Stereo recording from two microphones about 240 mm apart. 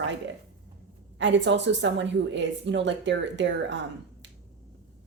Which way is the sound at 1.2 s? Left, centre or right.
Right.